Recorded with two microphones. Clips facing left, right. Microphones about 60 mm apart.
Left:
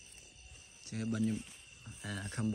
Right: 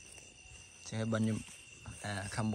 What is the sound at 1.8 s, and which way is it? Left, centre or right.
Speech, right.